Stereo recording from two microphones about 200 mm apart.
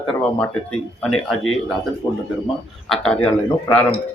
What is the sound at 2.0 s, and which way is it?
Speech, 15° left (ahead or behind).